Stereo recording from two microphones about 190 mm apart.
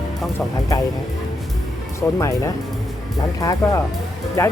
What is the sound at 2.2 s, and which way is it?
Speech, 15° left (ahead or behind).